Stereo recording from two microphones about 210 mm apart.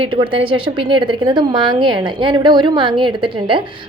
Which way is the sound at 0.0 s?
25° right (ahead or behind).